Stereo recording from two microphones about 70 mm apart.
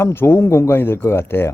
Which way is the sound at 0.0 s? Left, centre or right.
Left.